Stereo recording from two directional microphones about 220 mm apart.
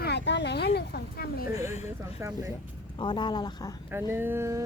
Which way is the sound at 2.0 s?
15° right (ahead or behind).